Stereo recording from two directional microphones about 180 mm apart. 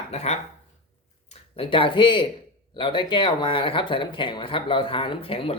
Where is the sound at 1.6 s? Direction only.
30° left (ahead or behind).